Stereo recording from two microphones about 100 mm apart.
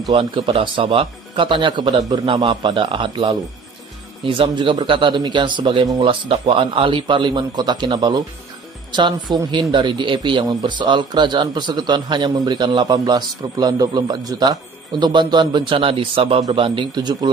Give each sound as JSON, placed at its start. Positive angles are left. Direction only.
{"t": 0.1, "sound": "speech", "side_deg": -65}